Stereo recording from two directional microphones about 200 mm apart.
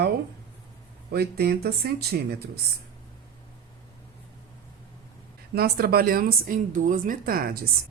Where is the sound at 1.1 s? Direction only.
50° right (ahead or behind).